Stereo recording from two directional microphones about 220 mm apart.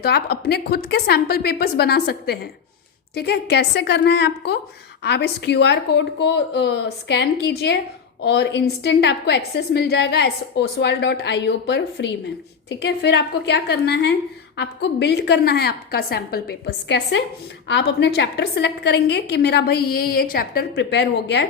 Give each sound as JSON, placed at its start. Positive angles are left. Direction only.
{"t": 0.0, "sound": "a woman's voice", "side_deg": 45}